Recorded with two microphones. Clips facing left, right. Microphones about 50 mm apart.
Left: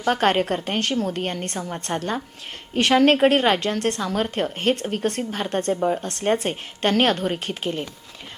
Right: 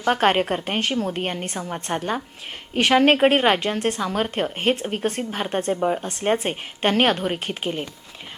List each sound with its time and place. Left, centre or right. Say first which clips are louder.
0.0 s a woman's voice: right 1 dB; centre